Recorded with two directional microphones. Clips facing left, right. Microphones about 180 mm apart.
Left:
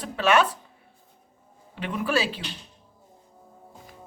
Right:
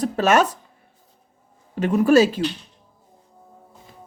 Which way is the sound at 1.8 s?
45° right (ahead or behind).